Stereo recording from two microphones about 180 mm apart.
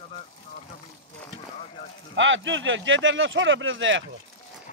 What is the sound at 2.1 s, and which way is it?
Speech, 90° right.